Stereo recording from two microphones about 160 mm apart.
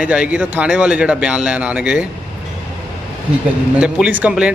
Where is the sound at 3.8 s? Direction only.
10° right (ahead or behind).